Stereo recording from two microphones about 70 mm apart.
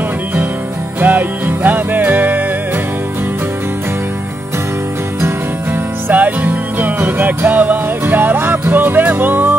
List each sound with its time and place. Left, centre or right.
1.0 s music: right
6.0 s music: right